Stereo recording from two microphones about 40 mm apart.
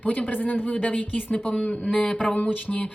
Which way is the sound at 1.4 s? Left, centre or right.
Left.